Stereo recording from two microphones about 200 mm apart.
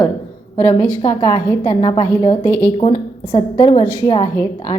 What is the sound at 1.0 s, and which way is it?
A woman's voice, 20° left (ahead or behind).